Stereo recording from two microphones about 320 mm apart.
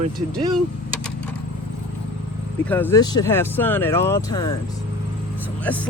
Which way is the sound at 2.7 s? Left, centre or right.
Centre.